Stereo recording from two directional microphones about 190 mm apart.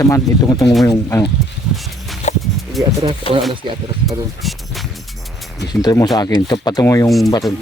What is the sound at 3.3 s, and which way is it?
Speech, 30° left (ahead or behind).